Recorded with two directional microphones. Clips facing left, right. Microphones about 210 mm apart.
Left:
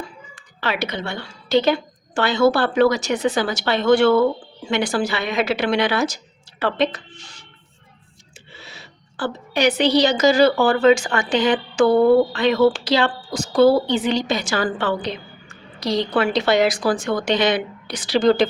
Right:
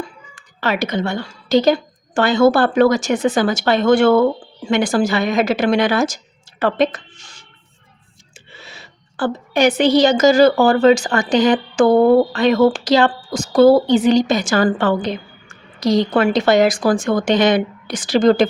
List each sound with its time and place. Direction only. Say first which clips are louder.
0.3 s a woman's voice: right 4 dB; 45° right (ahead or behind)
8.5 s a woman's voice: right 1 dB; 50° right (ahead or behind)